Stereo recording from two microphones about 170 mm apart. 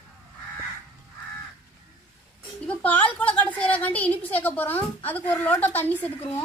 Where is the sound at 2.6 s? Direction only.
10° left (ahead or behind).